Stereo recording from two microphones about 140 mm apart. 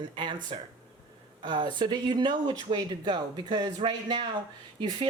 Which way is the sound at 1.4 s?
30° right (ahead or behind).